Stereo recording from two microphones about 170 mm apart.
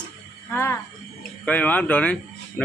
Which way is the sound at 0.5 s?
15° left (ahead or behind).